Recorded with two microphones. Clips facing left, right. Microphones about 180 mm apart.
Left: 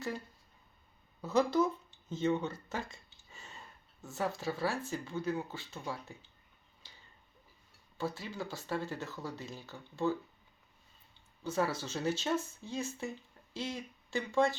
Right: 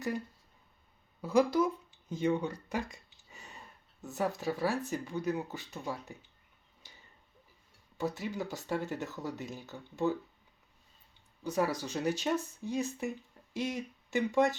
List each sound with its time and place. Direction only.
1.2 s speech: 10° right (ahead or behind)
7.9 s speech: 20° right (ahead or behind)
11.4 s speech: 15° right (ahead or behind)